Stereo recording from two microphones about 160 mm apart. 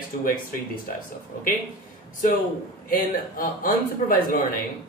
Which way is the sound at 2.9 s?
60° left (ahead or behind).